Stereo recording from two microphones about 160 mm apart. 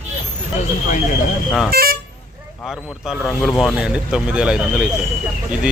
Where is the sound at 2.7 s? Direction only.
5° right (ahead or behind).